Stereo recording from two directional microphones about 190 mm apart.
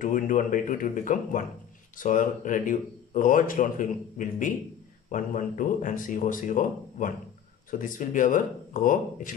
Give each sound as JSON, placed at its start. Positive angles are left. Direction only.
{"t": 0.0, "sound": "speech", "side_deg": 45}